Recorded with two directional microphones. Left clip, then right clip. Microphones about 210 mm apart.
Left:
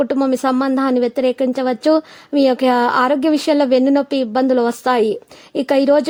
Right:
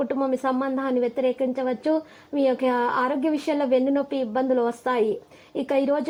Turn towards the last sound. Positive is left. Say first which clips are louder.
# left 9 dB
turn(degrees=45)  # may be behind; listen again after turning